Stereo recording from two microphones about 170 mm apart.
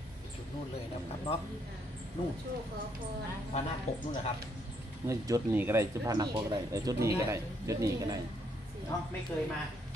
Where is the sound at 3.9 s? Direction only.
40° left (ahead or behind).